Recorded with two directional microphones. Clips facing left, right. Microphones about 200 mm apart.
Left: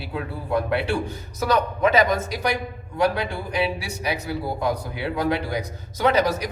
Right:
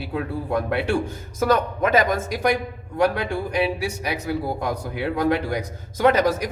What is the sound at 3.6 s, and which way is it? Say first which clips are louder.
A man's voice: right 1 dB; 50° right (ahead or behind).